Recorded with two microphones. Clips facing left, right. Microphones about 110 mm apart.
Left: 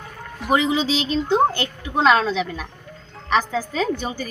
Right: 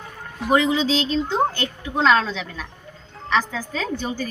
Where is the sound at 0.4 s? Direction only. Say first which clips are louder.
Right 1 dB; 15° left (ahead or behind).